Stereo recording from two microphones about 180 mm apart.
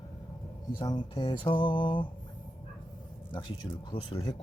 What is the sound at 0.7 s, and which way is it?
Mantra, 25° left (ahead or behind).